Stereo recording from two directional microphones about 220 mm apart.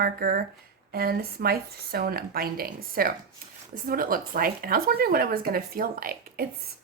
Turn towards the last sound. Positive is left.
turn(degrees=-40)  # may be behind; listen again after turning